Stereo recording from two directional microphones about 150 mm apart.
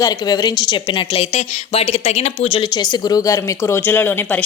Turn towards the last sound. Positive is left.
turn(degrees=10)  # may be behind; listen again after turning